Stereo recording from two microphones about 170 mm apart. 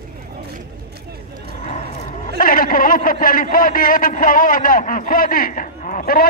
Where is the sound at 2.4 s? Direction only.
55° left (ahead or behind).